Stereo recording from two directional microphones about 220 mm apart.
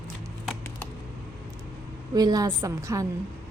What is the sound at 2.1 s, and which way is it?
Speech, 15° right (ahead or behind).